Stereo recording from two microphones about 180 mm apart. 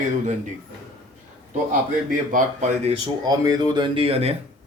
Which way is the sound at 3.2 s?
20° right (ahead or behind).